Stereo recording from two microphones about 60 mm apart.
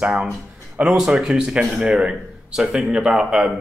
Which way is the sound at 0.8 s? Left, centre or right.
Centre.